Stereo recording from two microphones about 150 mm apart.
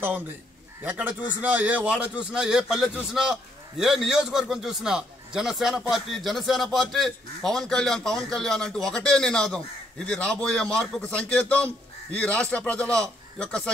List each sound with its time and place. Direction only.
0.8 s a man's voice: 10° right (ahead or behind); by 13.7 s 5° left (ahead or behind)